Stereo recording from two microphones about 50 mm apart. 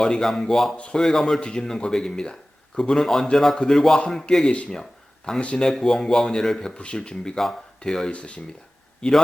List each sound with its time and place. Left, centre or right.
0.0 s a man's voice: centre
4.7 s a sound: centre
5.4 s speech: left
5.6 s a man's voice: centre
6.7 s a man's voice: left
9.0 s a man's voice: centre